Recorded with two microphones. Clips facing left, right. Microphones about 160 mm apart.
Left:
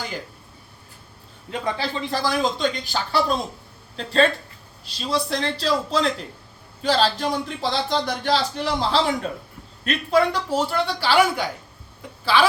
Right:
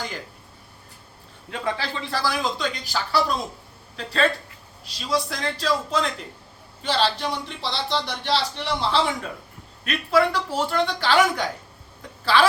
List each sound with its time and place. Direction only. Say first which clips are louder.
1.5 s speech: left 2 dB; 15° left (ahead or behind); by 9.1 s 40° left (ahead or behind)
9.9 s a woman's voice: left 1 dB; 20° left (ahead or behind); by 12.5 s centre (ahead or behind)